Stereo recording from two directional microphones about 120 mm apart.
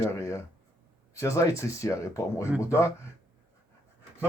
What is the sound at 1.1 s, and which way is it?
Speech, 25° left (ahead or behind).